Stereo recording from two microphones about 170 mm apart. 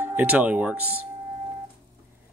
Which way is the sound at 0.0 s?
10° right (ahead or behind).